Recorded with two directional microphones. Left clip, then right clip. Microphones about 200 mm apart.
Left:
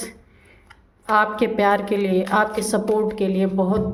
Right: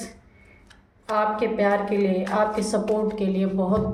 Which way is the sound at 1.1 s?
50° left (ahead or behind).